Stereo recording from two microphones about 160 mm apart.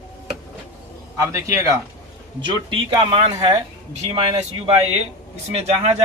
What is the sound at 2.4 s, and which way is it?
Speech, 30° right (ahead or behind).